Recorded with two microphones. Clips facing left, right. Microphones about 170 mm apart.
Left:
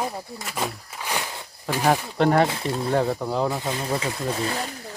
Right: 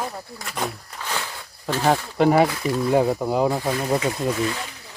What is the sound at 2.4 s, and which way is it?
Speech, 25° left (ahead or behind).